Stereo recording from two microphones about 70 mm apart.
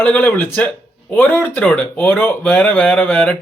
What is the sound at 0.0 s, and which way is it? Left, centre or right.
Speech, centre.